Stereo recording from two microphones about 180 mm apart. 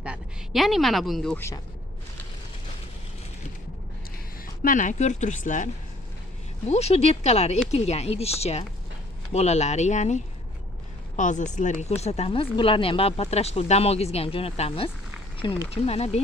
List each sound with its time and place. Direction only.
0.0 s a woman's voice: 5° right (ahead or behind)
4.6 s speech: 45° left (ahead or behind)
6.7 s speech: 35° left (ahead or behind)